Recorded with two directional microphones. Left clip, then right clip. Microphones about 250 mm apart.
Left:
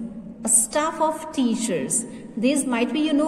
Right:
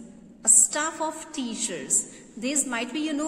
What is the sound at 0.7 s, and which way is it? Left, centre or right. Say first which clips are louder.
A woman's voice: left 7 dB; centre.